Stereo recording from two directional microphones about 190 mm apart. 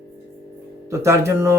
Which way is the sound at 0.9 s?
15° right (ahead or behind).